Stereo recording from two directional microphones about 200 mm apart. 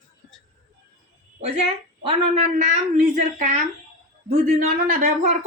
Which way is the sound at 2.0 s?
35° right (ahead or behind).